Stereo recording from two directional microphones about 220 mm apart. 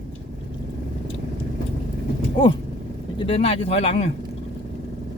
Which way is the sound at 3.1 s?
25° left (ahead or behind).